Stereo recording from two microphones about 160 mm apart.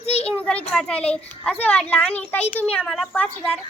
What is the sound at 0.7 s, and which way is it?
A child's voice, 5° left (ahead or behind).